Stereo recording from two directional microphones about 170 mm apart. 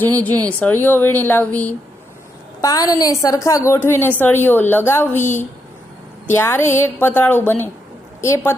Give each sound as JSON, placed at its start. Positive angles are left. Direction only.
{"t": 0.4, "sound": "a woman's voice", "side_deg": 10}
{"t": 6.2, "sound": "a woman's voice", "side_deg": 15}